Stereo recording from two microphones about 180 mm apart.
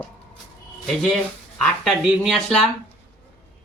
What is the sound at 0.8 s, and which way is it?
Speech, centre (ahead or behind).